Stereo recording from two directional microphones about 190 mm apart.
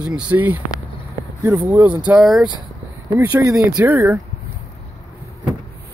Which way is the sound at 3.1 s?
20° right (ahead or behind).